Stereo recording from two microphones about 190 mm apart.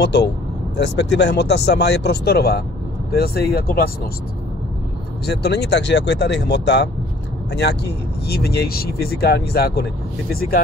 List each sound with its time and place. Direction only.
0.0 s speech: 60° left (ahead or behind)
5.2 s speech: 60° left (ahead or behind)